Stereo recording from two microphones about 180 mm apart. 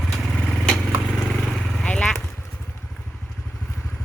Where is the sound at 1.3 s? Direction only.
Centre (ahead or behind).